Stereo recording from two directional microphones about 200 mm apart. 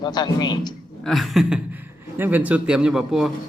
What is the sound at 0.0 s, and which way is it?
Speech, 20° left (ahead or behind).